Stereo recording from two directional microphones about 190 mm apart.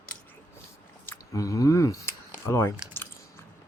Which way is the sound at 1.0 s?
15° left (ahead or behind).